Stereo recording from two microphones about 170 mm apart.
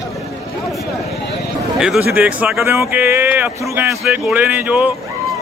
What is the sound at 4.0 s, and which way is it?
Speech, 5° right (ahead or behind).